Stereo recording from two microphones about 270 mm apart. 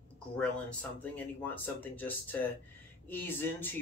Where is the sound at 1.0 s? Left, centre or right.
Centre.